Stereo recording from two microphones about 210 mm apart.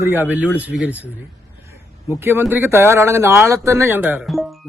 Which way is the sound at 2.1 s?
10° right (ahead or behind).